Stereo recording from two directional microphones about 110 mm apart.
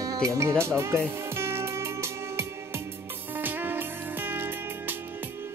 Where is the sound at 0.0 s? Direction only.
35° right (ahead or behind).